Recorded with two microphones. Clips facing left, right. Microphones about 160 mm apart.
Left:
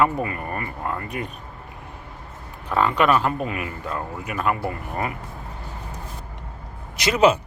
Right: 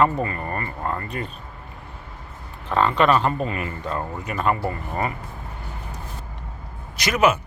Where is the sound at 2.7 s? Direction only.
10° left (ahead or behind).